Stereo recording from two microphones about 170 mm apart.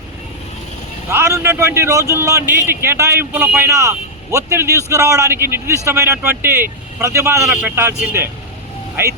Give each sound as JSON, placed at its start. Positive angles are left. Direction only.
{"t": 1.1, "sound": "a man's voice", "side_deg": -15}